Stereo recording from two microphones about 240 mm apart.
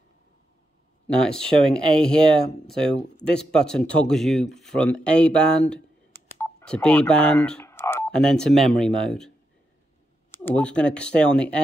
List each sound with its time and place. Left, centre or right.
1.0 s speech: centre
10.3 s speech: centre